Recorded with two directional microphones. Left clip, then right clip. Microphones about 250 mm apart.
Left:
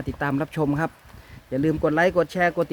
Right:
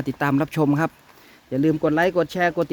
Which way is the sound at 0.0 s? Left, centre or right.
Centre.